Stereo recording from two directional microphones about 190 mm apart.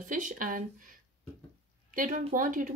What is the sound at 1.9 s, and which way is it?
Speech, 45° right (ahead or behind).